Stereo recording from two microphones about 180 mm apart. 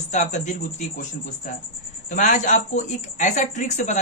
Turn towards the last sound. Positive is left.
turn(degrees=45)  # may be behind; listen again after turning